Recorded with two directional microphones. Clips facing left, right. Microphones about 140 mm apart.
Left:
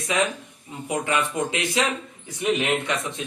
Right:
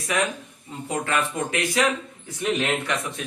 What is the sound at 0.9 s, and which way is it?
A man's voice, 20° left (ahead or behind).